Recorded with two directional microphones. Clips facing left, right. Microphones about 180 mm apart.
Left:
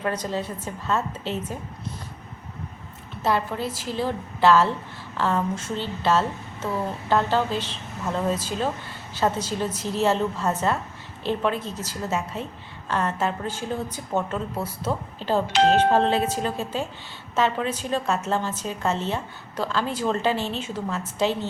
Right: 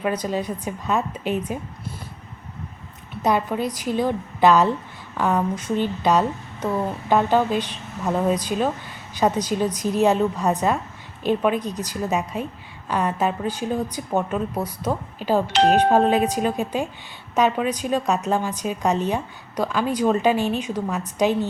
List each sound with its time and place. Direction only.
0.0 s a woman's voice: 10° right (ahead or behind)
3.2 s a woman's voice: 15° right (ahead or behind)